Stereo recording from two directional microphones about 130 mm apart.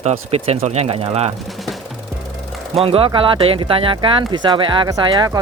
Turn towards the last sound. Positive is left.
turn(degrees=-30)  # may be behind; listen again after turning